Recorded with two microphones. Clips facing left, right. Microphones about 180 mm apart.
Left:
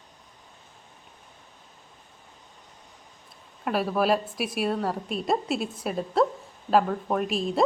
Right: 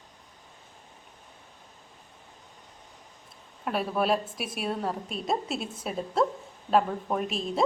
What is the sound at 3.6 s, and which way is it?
A woman's voice, centre (ahead or behind).